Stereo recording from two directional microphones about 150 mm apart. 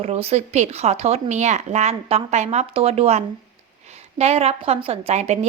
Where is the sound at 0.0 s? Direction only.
45° right (ahead or behind).